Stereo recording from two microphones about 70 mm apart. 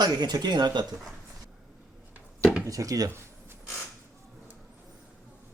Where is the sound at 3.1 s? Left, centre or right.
Right.